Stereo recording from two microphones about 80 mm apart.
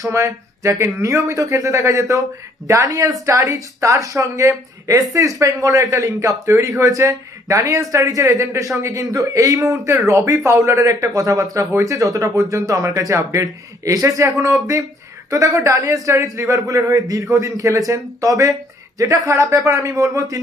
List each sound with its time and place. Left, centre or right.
0.1 s speech: right
10.9 s a man's voice: right